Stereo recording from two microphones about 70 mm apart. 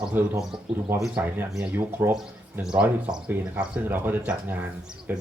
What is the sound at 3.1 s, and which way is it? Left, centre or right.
Speech, centre.